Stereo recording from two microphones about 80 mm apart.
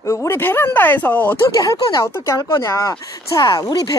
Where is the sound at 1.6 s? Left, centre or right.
Left.